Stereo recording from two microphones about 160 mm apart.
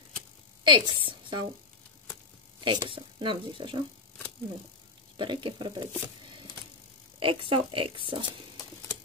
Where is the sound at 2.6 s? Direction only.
30° right (ahead or behind).